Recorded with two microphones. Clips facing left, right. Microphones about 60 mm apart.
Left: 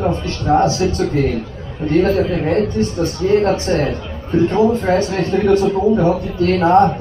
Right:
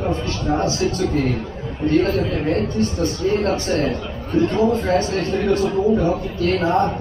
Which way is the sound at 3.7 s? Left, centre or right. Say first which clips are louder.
Left 2 dB; centre.